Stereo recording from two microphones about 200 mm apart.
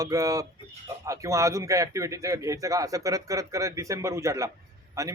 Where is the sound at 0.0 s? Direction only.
15° right (ahead or behind).